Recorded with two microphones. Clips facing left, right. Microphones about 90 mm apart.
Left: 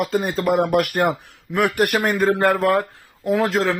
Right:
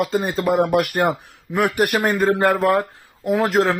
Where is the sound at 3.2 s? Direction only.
25° right (ahead or behind).